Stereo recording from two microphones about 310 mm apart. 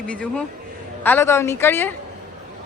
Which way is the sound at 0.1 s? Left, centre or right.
Centre.